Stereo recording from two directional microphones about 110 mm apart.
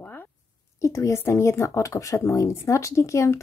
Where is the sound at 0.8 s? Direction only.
25° left (ahead or behind).